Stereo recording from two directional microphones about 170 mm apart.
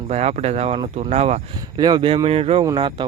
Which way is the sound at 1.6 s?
25° right (ahead or behind).